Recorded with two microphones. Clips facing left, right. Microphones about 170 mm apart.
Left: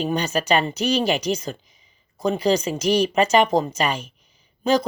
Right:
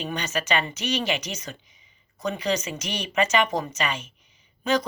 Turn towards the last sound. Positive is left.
turn(degrees=35)  # may be behind; listen again after turning